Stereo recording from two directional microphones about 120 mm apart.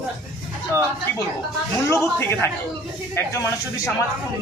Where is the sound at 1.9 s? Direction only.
20° left (ahead or behind).